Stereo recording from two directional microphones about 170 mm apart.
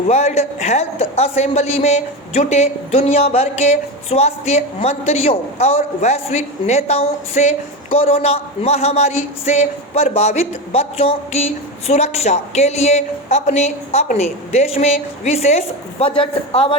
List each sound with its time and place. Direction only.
0.1 s a man's voice: 40° left (ahead or behind)